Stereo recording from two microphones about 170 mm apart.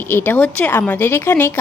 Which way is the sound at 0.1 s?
10° left (ahead or behind).